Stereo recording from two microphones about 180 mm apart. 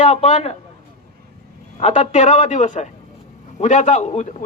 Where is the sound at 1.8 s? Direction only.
40° left (ahead or behind).